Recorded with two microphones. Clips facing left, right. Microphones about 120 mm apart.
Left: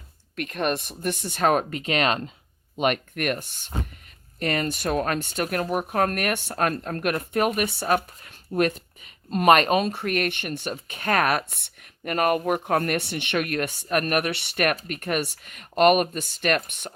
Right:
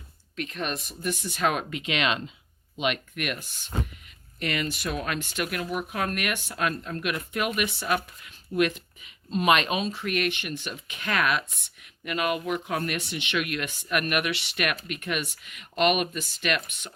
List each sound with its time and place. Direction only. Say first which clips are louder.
0.3 s speech: left 6 dB; 55° left (ahead or behind)